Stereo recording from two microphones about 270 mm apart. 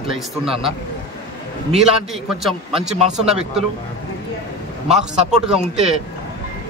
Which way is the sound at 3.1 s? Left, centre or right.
Centre.